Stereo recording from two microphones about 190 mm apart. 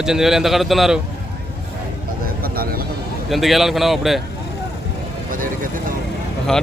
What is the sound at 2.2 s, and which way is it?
Vehicle, 50° right (ahead or behind).